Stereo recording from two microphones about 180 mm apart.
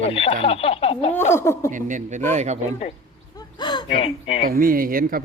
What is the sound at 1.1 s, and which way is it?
Speech, 10° left (ahead or behind).